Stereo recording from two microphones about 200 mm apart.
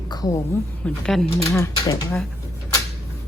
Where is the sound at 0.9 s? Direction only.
5° left (ahead or behind).